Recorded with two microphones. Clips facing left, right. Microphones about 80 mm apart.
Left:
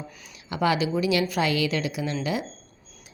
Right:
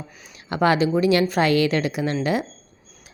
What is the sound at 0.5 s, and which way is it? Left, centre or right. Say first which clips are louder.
Speech: right 5 dB; right.